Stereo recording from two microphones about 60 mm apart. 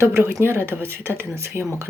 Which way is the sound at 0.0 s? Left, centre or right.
Right.